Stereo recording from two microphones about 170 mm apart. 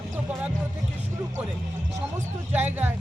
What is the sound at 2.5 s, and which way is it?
Speech, 10° right (ahead or behind).